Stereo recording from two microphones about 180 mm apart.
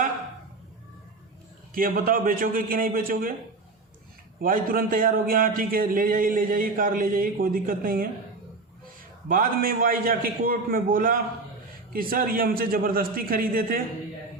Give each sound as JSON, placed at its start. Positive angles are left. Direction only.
{"t": 1.7, "sound": "speech", "side_deg": -50}
{"t": 4.4, "sound": "speech", "side_deg": -50}
{"t": 9.3, "sound": "speech", "side_deg": -50}